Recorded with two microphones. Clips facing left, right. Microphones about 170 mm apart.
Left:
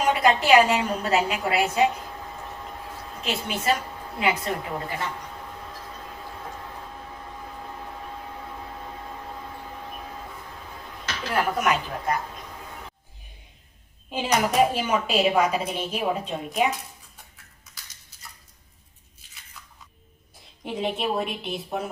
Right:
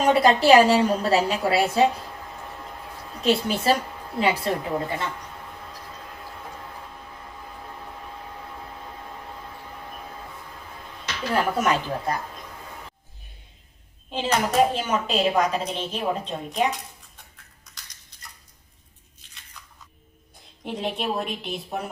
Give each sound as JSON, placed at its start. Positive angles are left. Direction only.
{"t": 0.1, "sound": "a woman's voice", "side_deg": -35}
{"t": 3.2, "sound": "a woman's voice", "side_deg": -35}
{"t": 11.3, "sound": "a woman's voice", "side_deg": -30}
{"t": 14.1, "sound": "speech", "side_deg": 10}
{"t": 17.7, "sound": "crushing", "side_deg": 5}
{"t": 19.2, "sound": "crunch", "side_deg": 5}
{"t": 20.7, "sound": "a woman's voice", "side_deg": 0}